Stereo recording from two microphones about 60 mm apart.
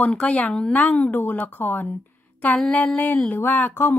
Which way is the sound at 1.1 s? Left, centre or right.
Left.